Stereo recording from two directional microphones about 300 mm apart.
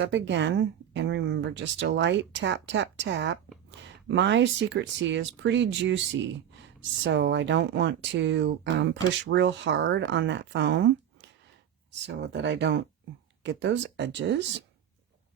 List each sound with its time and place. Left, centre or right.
0.0 s speech: right
7.0 s speech: right